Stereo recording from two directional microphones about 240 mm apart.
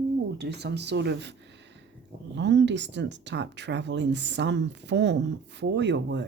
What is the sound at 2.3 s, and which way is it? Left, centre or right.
Speech, right.